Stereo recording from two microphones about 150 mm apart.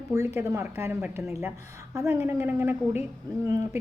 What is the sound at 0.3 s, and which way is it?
A woman's voice, 20° right (ahead or behind).